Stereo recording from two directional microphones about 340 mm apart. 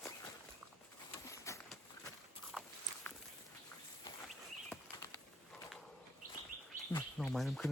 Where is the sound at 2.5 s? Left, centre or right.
Centre.